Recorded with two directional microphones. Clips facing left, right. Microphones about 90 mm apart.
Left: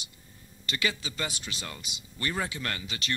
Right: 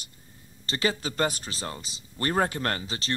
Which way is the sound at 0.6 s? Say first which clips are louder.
Right 4 dB; 35° right (ahead or behind).